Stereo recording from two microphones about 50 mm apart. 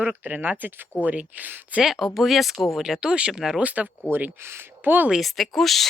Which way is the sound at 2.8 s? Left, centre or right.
Centre.